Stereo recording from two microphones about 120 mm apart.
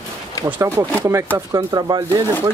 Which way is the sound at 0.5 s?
20° right (ahead or behind).